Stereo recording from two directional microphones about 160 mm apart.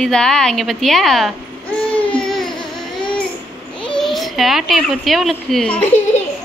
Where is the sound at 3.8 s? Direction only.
5° left (ahead or behind).